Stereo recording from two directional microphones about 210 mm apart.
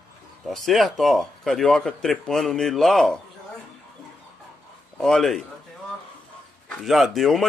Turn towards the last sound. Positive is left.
turn(degrees=0)  # may be behind; listen again after turning